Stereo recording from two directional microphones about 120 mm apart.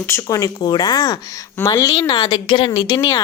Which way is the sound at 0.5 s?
35° left (ahead or behind).